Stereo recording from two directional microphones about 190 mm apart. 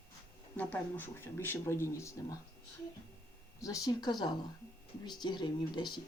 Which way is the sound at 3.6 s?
20° left (ahead or behind).